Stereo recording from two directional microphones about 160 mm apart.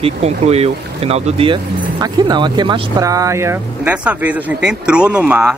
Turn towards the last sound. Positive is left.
turn(degrees=-5)  # may be behind; listen again after turning